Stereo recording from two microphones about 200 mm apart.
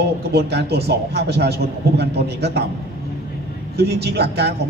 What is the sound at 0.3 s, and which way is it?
A man's voice, 55° right (ahead or behind).